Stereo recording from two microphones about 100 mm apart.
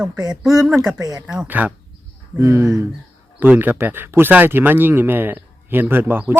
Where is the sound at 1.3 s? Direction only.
15° right (ahead or behind).